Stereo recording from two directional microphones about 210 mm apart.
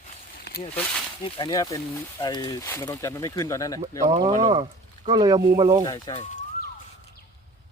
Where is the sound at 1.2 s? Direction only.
20° left (ahead or behind).